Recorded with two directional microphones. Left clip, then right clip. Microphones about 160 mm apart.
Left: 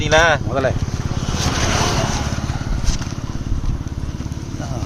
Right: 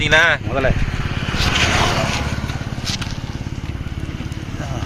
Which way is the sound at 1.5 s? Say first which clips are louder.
Right 4 dB; 10° right (ahead or behind).